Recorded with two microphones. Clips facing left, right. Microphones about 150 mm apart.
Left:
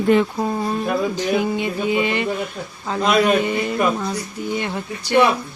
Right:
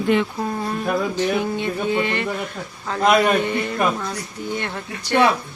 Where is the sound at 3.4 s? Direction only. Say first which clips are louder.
Left 2 dB; 15° left (ahead or behind).